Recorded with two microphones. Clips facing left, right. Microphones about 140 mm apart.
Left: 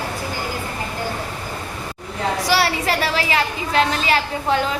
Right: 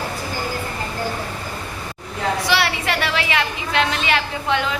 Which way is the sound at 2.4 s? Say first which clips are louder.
Left 5 dB; 40° left (ahead or behind).